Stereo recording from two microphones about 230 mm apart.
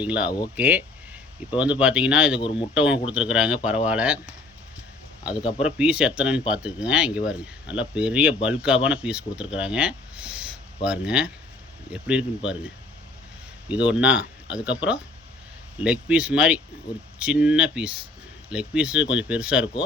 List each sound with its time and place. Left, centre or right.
0.0 s speech: centre
2.4 s a man's voice: left
2.7 s speech: centre
13.7 s speech: centre
15.8 s speech: centre